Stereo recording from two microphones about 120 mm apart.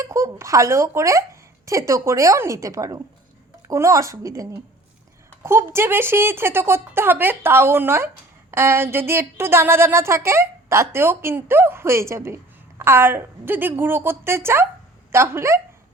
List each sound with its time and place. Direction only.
0.0 s speech: 25° right (ahead or behind)